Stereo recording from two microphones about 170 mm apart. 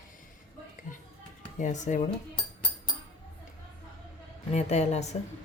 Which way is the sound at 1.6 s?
45° left (ahead or behind).